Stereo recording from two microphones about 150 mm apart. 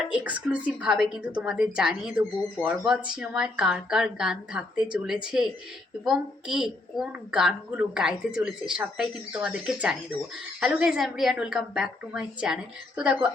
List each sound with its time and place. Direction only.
0.1 s a woman's voice: 10° right (ahead or behind)